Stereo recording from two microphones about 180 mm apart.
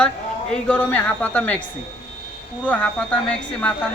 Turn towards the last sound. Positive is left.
turn(degrees=10)  # may be behind; listen again after turning